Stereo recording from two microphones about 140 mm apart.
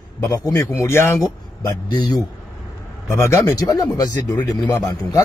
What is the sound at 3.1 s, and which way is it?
Speech, 20° left (ahead or behind).